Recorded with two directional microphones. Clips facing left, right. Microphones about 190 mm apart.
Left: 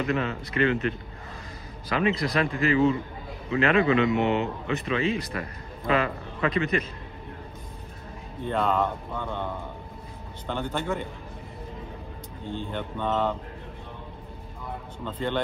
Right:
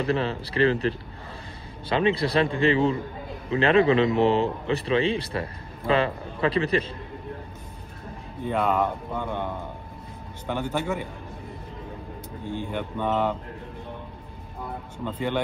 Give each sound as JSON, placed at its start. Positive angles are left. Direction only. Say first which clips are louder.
{"t": 0.0, "sound": "a man's voice", "louder": "right 2 dB", "side_deg": -30}
{"t": 8.5, "sound": "speech", "louder": "right 1 dB", "side_deg": -10}
{"t": 12.4, "sound": "speech", "louder": "right 2 dB", "side_deg": -10}
{"t": 15.0, "sound": "speech", "louder": "right 1 dB", "side_deg": -10}